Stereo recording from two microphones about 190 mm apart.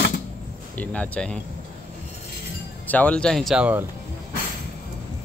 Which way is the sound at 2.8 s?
10° left (ahead or behind).